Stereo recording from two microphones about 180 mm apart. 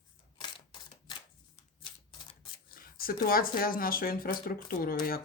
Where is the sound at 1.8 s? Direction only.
25° left (ahead or behind).